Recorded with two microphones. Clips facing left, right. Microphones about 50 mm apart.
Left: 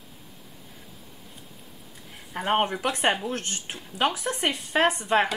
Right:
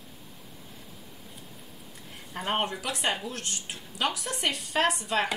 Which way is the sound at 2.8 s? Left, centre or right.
Left.